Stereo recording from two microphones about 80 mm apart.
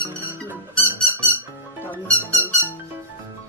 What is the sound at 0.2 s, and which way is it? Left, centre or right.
Music, right.